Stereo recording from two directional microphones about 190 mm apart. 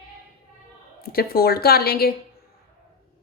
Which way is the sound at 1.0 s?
55° left (ahead or behind).